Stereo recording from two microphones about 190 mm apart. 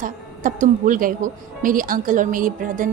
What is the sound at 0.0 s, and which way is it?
A woman's voice, 45° right (ahead or behind).